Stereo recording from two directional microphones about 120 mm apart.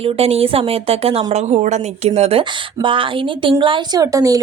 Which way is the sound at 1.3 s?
70° right (ahead or behind).